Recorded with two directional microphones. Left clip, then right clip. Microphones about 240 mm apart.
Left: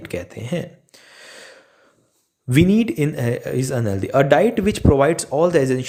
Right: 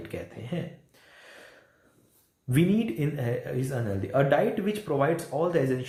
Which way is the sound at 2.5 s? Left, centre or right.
Left.